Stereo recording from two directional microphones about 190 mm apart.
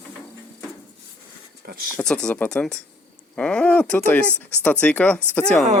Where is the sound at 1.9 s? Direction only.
5° left (ahead or behind).